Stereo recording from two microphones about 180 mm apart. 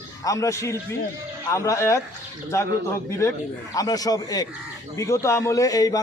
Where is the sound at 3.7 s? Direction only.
20° left (ahead or behind).